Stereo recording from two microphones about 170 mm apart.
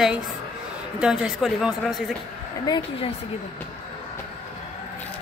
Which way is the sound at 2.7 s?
25° left (ahead or behind).